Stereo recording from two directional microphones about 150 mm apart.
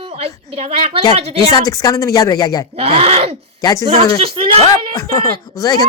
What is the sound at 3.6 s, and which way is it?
Speech, 20° left (ahead or behind).